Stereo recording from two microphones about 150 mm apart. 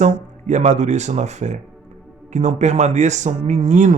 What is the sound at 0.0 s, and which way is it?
Speech, 50° right (ahead or behind).